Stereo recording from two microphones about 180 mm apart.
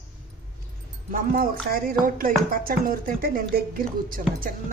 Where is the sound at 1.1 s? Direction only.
55° right (ahead or behind).